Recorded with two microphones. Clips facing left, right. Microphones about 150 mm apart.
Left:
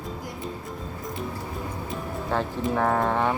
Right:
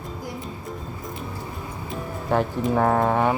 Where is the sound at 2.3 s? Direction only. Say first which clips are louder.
Right 5 dB; 15° right (ahead or behind).